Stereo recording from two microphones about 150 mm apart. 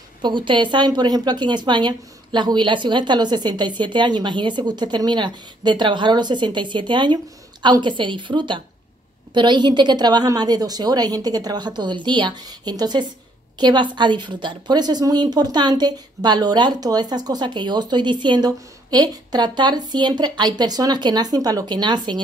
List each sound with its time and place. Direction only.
0.2 s a woman's voice: 30° right (ahead or behind)